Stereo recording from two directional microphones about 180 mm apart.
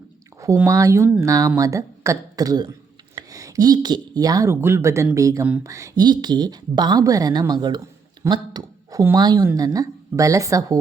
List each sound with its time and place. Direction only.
0.3 s speech: 20° right (ahead or behind)